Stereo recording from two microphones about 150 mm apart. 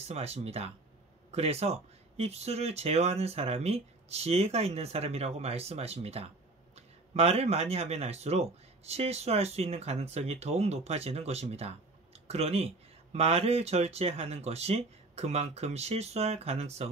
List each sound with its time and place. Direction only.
0.1 s speech: 45° right (ahead or behind)